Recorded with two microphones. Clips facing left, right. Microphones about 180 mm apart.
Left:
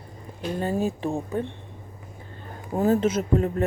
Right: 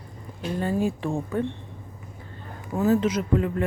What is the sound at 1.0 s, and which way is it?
Speech, 20° left (ahead or behind).